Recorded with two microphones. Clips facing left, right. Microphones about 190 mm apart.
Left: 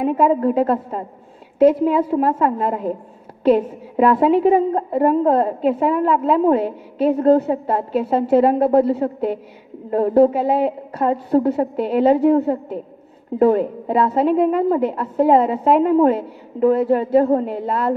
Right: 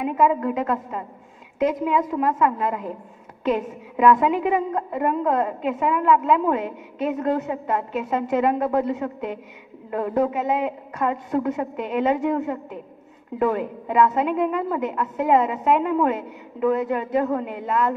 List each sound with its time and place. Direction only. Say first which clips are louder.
0.0 s a woman's voice: left 4 dB; 30° left (ahead or behind)